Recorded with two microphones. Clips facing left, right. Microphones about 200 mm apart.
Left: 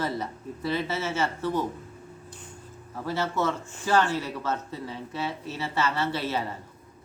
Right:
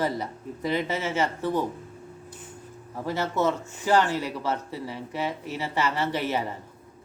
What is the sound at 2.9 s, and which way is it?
Speech, 15° right (ahead or behind).